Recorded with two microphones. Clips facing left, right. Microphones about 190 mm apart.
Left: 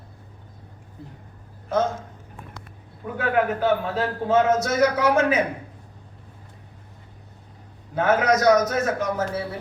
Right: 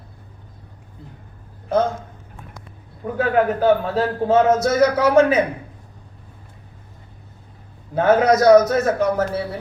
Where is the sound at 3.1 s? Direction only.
40° right (ahead or behind).